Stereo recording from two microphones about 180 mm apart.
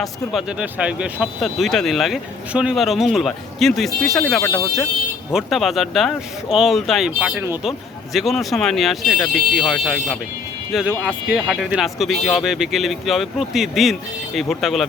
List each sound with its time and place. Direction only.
0.0 s speech: 5° right (ahead or behind)
4.4 s speech: 15° left (ahead or behind)
5.3 s speech: centre (ahead or behind)
8.1 s speech: centre (ahead or behind)